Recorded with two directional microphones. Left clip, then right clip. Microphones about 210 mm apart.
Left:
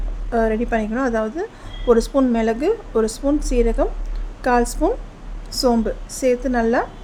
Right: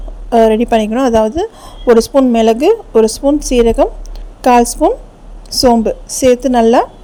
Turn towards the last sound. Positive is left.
turn(degrees=-35)  # may be behind; listen again after turning